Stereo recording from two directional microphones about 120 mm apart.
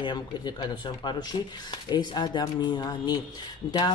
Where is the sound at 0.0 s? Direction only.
35° left (ahead or behind).